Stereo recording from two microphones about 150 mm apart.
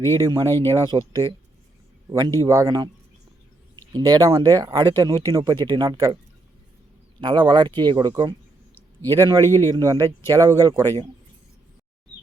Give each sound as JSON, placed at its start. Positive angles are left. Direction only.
{"t": 0.2, "sound": "speech", "side_deg": -25}
{"t": 3.9, "sound": "speech", "side_deg": -30}
{"t": 7.2, "sound": "speech", "side_deg": -30}
{"t": 9.4, "sound": "speech", "side_deg": 15}
{"t": 9.6, "sound": "speech", "side_deg": -25}